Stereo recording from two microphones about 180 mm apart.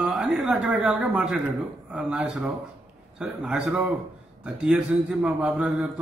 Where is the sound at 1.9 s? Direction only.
5° right (ahead or behind).